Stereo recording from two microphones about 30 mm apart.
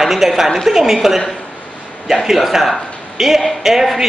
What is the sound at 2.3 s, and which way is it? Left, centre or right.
Speech, centre.